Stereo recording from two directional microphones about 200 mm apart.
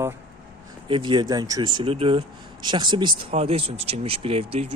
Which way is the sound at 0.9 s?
25° right (ahead or behind).